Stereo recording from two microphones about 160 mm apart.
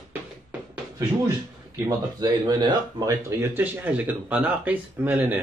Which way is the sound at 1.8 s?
25° right (ahead or behind).